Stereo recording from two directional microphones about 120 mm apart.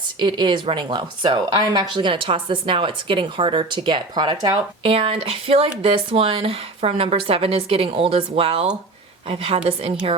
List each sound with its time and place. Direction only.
0.2 s speech: 40° right (ahead or behind)
4.8 s speech: 50° right (ahead or behind)